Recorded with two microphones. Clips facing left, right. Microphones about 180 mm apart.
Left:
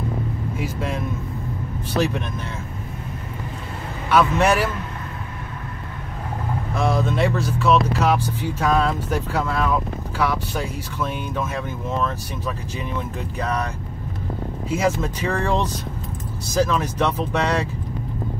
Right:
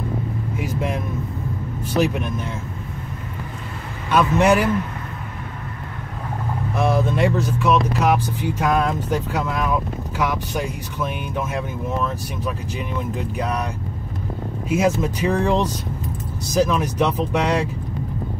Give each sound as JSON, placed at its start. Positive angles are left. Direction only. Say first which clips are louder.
{"t": 0.6, "sound": "speech", "louder": "right 2 dB", "side_deg": -15}
{"t": 4.1, "sound": "speech", "louder": "right 1 dB", "side_deg": -20}
{"t": 6.7, "sound": "speech", "louder": "right 2 dB", "side_deg": -15}
{"t": 14.7, "sound": "speech", "louder": "right 3 dB", "side_deg": -15}